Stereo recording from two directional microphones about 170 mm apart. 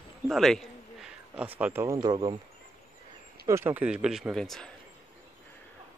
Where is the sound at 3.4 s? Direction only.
15° right (ahead or behind); by 4.7 s 5° left (ahead or behind).